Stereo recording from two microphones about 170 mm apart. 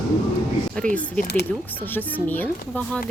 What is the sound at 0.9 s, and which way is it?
Speech, 10° left (ahead or behind).